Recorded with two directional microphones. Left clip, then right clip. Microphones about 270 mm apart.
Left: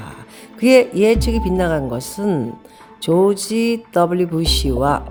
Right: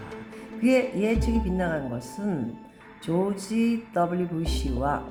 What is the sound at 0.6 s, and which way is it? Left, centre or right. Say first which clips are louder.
Speech: left 11 dB; left.